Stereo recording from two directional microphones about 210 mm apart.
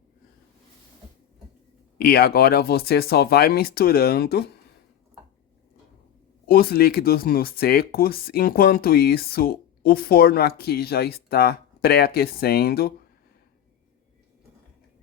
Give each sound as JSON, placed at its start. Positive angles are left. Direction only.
{"t": 2.0, "sound": "speech", "side_deg": 45}
{"t": 6.5, "sound": "speech", "side_deg": 45}